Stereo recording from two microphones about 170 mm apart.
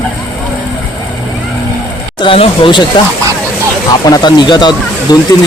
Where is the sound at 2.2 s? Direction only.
30° left (ahead or behind).